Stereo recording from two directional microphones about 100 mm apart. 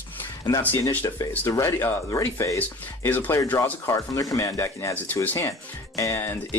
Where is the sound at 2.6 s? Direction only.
20° left (ahead or behind).